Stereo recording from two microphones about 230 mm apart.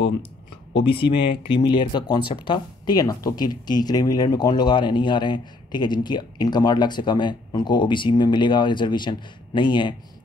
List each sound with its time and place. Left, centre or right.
0.8 s speech: left